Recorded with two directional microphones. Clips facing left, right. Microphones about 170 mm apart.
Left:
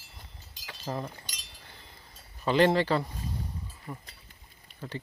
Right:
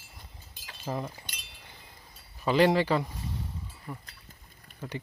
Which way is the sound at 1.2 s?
60° right (ahead or behind).